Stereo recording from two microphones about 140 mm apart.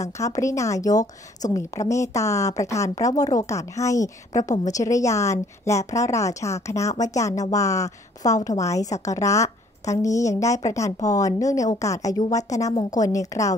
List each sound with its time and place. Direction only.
0.0 s a woman's voice: 25° left (ahead or behind)